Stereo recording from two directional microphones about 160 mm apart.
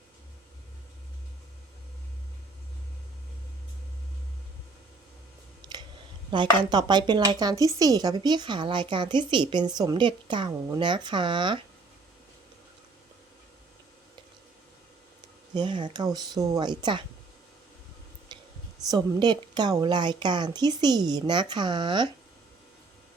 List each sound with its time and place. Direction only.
6.3 s a woman's voice: 30° right (ahead or behind)
15.5 s a woman's voice: 30° right (ahead or behind)
18.3 s a sound: 25° right (ahead or behind)
18.9 s a woman's voice: 25° right (ahead or behind)